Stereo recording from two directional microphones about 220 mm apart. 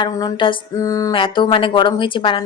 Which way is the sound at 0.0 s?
20° left (ahead or behind).